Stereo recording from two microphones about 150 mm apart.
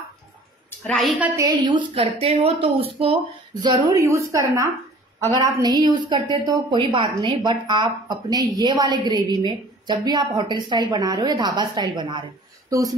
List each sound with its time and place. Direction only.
1.2 s a woman's voice: 20° right (ahead or behind)
1.5 s speech: 30° right (ahead or behind)
3.6 s a woman's voice: 25° right (ahead or behind)